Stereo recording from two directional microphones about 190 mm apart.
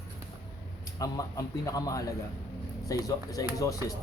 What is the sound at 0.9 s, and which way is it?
Speech, 20° left (ahead or behind).